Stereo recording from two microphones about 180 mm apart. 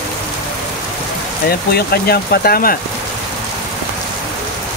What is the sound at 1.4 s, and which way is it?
Speech, 60° left (ahead or behind).